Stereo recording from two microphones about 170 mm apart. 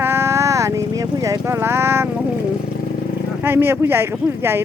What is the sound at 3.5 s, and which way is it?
Speech, 15° right (ahead or behind).